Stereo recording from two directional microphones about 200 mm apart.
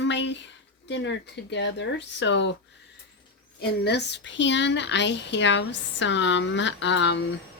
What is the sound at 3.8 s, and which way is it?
Speech, 60° left (ahead or behind).